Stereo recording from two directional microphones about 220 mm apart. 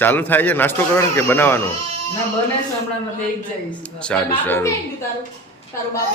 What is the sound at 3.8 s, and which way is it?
Speech, 5° left (ahead or behind).